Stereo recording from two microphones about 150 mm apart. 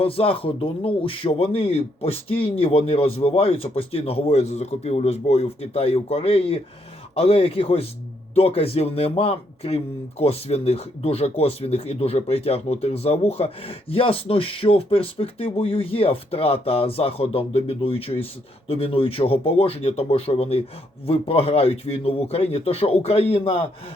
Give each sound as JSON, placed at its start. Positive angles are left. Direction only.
{"t": 0.0, "sound": "speech", "side_deg": 40}